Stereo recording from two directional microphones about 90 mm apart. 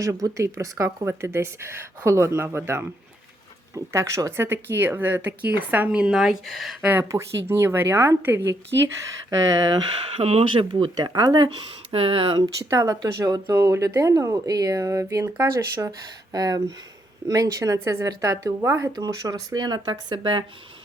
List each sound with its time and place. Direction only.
0.0 s speech: 35° right (ahead or behind)
3.9 s a woman's voice: 35° right (ahead or behind); by 6.7 s centre (ahead or behind)
7.1 s a woman's voice: 35° right (ahead or behind)
10.2 s speech: 90° right
10.9 s speech: 45° right (ahead or behind); by 12.4 s 90° right
12.5 s speech: 40° right (ahead or behind)
15.9 s a woman's voice: 45° right (ahead or behind); by 18.9 s 30° right (ahead or behind)
18.9 s speech: 45° right (ahead or behind)